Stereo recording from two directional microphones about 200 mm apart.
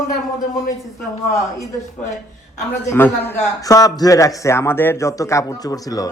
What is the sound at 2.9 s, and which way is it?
A man's voice, 10° left (ahead or behind).